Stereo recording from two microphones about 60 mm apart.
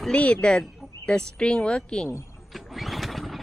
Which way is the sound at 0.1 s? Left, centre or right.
Left.